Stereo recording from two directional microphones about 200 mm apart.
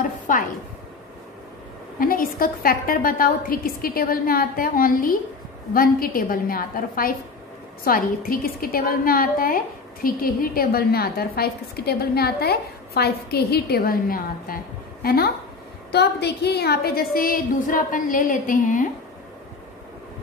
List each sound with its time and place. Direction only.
0.3 s speech: 40° left (ahead or behind)
2.0 s a woman's voice: 45° left (ahead or behind)